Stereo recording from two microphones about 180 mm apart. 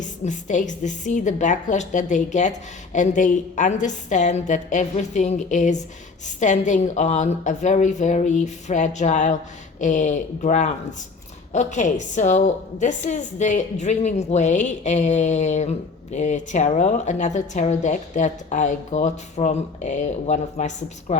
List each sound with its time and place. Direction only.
0.0 s a woman's voice: 45° left (ahead or behind)